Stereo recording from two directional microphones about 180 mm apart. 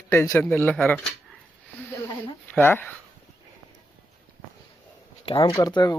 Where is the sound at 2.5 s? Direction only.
10° left (ahead or behind).